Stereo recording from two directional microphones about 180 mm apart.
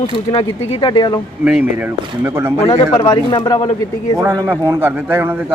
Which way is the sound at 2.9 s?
25° left (ahead or behind).